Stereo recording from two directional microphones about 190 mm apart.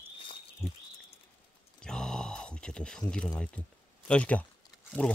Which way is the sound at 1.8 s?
5° left (ahead or behind).